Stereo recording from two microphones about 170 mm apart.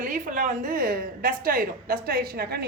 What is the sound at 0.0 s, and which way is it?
A woman's voice, 50° right (ahead or behind).